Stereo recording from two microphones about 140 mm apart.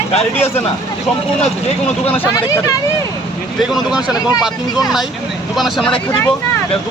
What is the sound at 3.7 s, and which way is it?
Speech, 5° right (ahead or behind).